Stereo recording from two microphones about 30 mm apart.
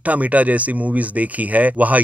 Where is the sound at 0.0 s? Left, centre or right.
Right.